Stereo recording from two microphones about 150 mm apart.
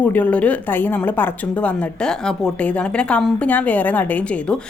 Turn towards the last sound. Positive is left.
turn(degrees=5)  # may be behind; listen again after turning